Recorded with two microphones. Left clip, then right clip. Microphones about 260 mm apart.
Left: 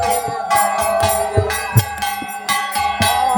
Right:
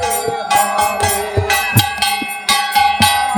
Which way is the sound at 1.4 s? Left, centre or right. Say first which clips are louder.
Right 6 dB; centre.